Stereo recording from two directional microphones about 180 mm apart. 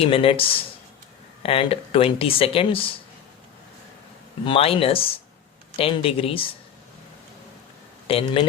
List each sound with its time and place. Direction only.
0.0 s speech: 30° left (ahead or behind)
4.4 s speech: 30° left (ahead or behind)
8.0 s speech: 30° left (ahead or behind)